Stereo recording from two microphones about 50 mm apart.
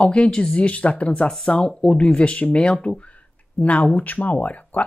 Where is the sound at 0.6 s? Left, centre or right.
Left.